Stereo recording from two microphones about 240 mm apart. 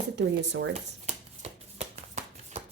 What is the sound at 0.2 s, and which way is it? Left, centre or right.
Speech, right.